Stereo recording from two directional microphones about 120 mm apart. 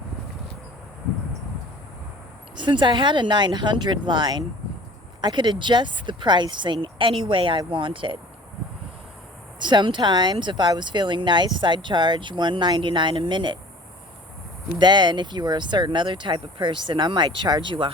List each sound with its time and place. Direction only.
2.6 s speech: 40° right (ahead or behind)
9.6 s speech: 40° right (ahead or behind)
14.8 s speech: 40° right (ahead or behind)